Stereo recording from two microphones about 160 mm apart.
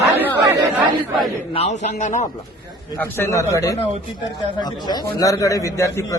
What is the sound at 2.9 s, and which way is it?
A man's voice, 15° left (ahead or behind).